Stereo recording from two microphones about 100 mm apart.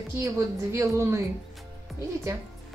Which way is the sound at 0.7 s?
30° right (ahead or behind).